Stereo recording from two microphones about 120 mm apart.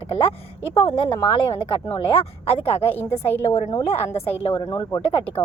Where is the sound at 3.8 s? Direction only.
60° left (ahead or behind).